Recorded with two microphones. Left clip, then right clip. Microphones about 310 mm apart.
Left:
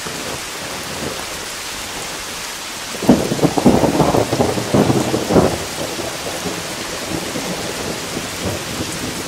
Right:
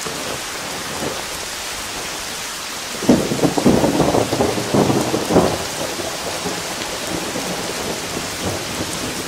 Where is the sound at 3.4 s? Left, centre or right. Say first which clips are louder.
Left 2 dB; centre.